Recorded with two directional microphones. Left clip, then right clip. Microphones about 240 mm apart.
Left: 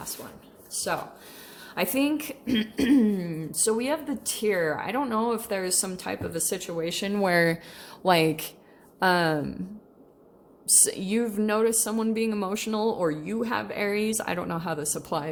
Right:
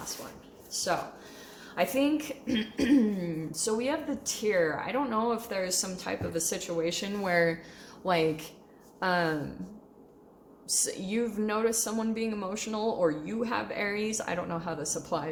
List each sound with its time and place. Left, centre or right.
1.7 s a woman's voice: left
10.8 s a woman's voice: left